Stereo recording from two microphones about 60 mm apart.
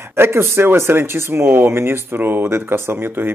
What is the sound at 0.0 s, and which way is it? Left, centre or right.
Speech, right.